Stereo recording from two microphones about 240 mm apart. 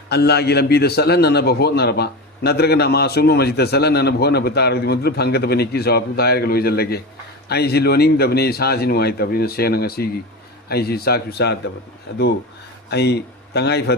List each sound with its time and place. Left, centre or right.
0.1 s a man's voice: left
12.9 s a man's voice: left